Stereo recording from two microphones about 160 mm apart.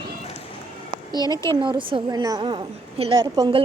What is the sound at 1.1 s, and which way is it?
Speech, 20° left (ahead or behind).